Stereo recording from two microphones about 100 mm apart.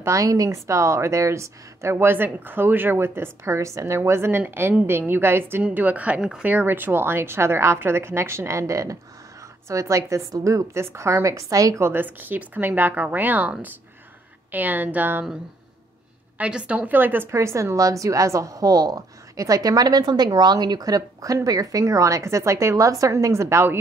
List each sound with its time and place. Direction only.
0.0 s a woman's voice: 35° right (ahead or behind); by 15.2 s 20° right (ahead or behind)
16.3 s a woman's voice: 10° right (ahead or behind); by 23.8 s 25° right (ahead or behind)